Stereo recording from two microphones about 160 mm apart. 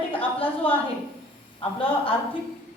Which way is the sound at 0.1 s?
35° left (ahead or behind).